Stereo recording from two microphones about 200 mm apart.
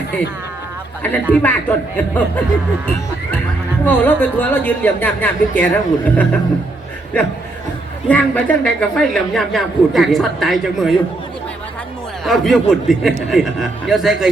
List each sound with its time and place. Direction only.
1.0 s speech: 10° left (ahead or behind)
3.8 s speech: 10° left (ahead or behind)
8.0 s speech: 5° left (ahead or behind)
12.2 s speech: centre (ahead or behind)